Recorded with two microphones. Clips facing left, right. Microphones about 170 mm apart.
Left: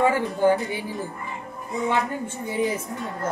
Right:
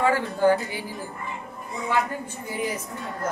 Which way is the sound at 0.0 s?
20° left (ahead or behind).